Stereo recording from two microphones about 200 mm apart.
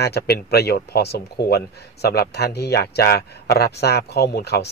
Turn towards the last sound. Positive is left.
turn(degrees=55)  # may be behind; listen again after turning